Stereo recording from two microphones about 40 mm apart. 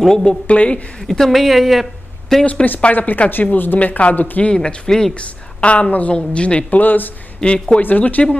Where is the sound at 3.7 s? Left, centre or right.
Left.